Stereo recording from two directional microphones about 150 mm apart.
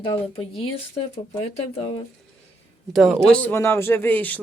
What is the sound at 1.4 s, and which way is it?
Speech, 45° left (ahead or behind).